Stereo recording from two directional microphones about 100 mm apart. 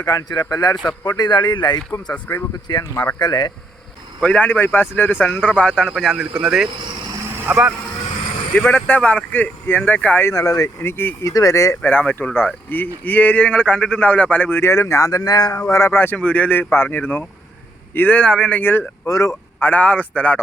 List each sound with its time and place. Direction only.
0.0 s speech: 40° left (ahead or behind)
2.1 s speech: 15° left (ahead or behind)
2.6 s speech: 45° left (ahead or behind)
4.2 s speech: 15° left (ahead or behind)
5.9 s speech: centre (ahead or behind); by 7.7 s 15° right (ahead or behind)
8.5 s speech: 15° left (ahead or behind)
10.2 s speech: 35° left (ahead or behind)
10.8 s speech: 25° left (ahead or behind)
11.8 s speech: 15° left (ahead or behind)
14.6 s speech: 25° left (ahead or behind)
15.7 s speech: 25° left (ahead or behind)
19.0 s speech: 35° left (ahead or behind)
19.5 s speech: 20° left (ahead or behind)